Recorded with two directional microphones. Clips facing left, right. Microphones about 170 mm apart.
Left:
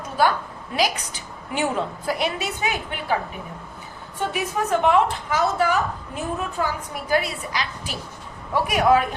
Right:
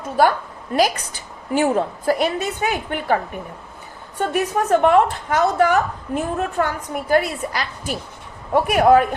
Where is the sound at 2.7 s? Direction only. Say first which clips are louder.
Right 5 dB; 55° right (ahead or behind).